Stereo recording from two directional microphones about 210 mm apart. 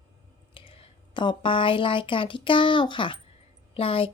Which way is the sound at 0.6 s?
25° left (ahead or behind).